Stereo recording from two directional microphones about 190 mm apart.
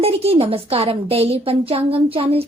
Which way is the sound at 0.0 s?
30° right (ahead or behind).